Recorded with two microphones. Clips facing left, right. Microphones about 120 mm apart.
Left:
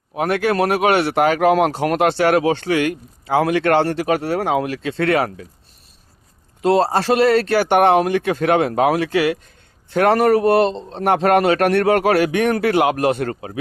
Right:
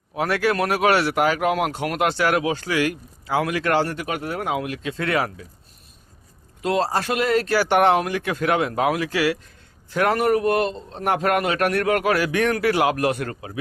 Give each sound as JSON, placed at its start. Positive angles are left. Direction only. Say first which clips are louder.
{"t": 0.3, "sound": "a man's voice", "louder": "left 4 dB", "side_deg": 30}
{"t": 3.6, "sound": "speech", "louder": "left 3 dB", "side_deg": 60}
{"t": 3.8, "sound": "speech", "louder": "left 8 dB", "side_deg": 30}
{"t": 4.9, "sound": "speech", "louder": "left 6 dB", "side_deg": 60}
{"t": 6.6, "sound": "speech", "louder": "left 6 dB", "side_deg": 30}
{"t": 7.3, "sound": "speech", "louder": "left 4 dB", "side_deg": 65}
{"t": 7.9, "sound": "speech", "louder": "left 6 dB", "side_deg": 25}
{"t": 9.1, "sound": "a man's voice", "louder": "left 4 dB", "side_deg": 25}
{"t": 10.1, "sound": "a man's voice", "louder": "left 6 dB", "side_deg": 35}